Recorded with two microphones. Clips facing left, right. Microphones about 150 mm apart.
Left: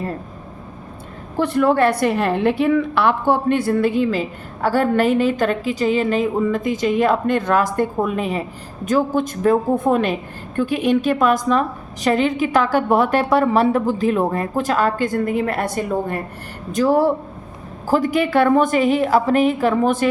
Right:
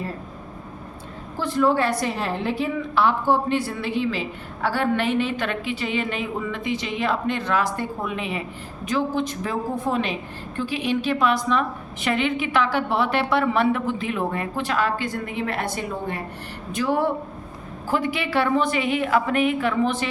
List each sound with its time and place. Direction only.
1.4 s a woman's voice: 60° left (ahead or behind)